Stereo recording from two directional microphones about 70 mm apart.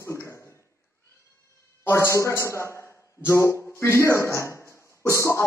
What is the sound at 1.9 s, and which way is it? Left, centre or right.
A man's voice, left.